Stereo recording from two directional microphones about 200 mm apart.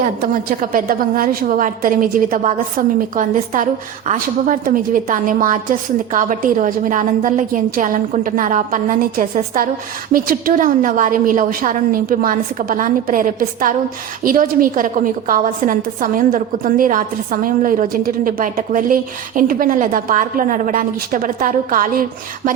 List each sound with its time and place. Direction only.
0.0 s a woman's voice: 45° right (ahead or behind)